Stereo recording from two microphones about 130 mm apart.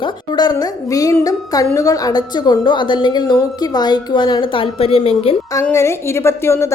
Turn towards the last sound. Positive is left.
turn(degrees=20)  # may be behind; listen again after turning